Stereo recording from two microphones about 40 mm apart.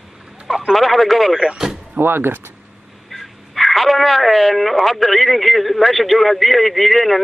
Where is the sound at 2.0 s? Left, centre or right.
Right.